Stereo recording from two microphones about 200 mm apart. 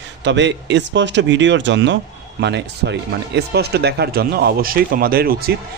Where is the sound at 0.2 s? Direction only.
60° right (ahead or behind).